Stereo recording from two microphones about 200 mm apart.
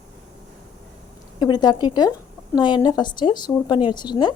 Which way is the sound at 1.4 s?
20° left (ahead or behind).